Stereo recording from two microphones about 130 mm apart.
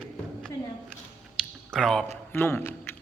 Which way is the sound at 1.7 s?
5° left (ahead or behind).